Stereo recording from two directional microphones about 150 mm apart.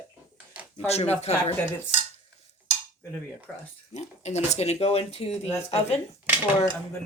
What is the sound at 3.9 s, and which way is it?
Speech, 50° left (ahead or behind).